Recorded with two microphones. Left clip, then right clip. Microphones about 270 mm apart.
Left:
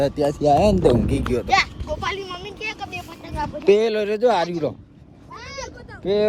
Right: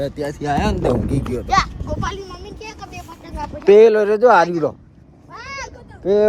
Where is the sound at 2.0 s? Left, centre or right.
Centre.